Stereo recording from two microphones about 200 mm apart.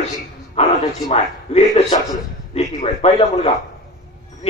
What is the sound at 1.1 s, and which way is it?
A man's voice, 30° left (ahead or behind).